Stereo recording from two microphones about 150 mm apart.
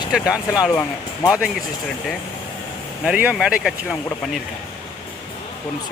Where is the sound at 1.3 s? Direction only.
Centre (ahead or behind).